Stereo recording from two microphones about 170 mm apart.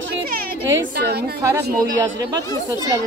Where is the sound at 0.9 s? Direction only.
75° right (ahead or behind).